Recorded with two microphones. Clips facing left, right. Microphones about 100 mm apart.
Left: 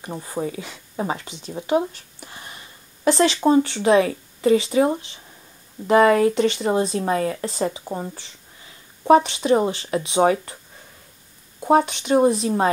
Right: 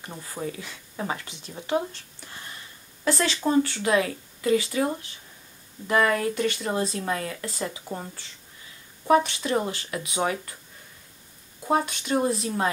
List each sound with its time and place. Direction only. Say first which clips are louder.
0.0 s speech: left 6 dB; 25° left (ahead or behind)
1.9 s a sound: left 3 dB; 15° left (ahead or behind)
3.1 s speech: left 7 dB; 25° left (ahead or behind)
11.6 s speech: left 7 dB; 20° left (ahead or behind)